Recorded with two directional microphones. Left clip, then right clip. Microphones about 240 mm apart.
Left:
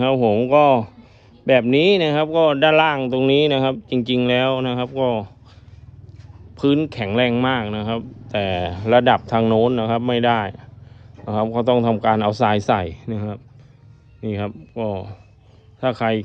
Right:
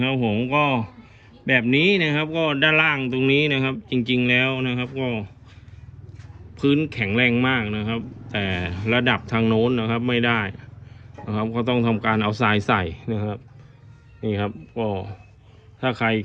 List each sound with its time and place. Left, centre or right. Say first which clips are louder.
0.0 s speech: left 7 dB; centre
6.6 s speech: left 2 dB; centre